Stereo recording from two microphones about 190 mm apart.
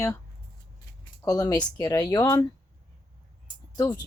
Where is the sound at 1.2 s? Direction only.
20° left (ahead or behind).